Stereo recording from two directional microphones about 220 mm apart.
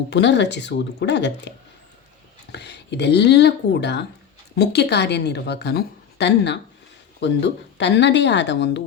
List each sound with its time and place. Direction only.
0.1 s a woman's voice: 50° left (ahead or behind)